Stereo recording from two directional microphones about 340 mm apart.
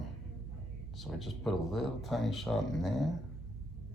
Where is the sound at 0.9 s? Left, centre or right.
Centre.